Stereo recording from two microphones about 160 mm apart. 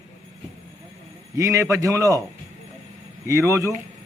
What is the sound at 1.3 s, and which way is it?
Speech, 20° right (ahead or behind).